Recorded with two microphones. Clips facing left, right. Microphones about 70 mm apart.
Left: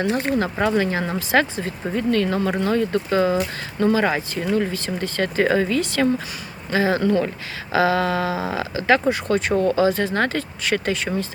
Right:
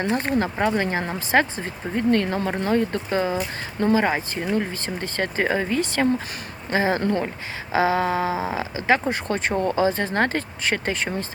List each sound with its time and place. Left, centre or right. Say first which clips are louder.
0.1 s speech: left 1 dB; right